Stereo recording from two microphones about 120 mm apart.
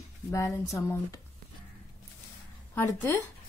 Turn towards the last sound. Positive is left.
turn(degrees=20)  # may be behind; listen again after turning